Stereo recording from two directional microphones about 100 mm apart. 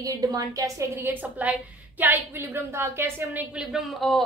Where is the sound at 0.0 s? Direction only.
40° right (ahead or behind).